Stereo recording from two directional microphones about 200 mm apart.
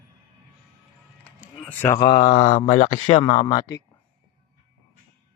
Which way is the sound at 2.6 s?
35° left (ahead or behind).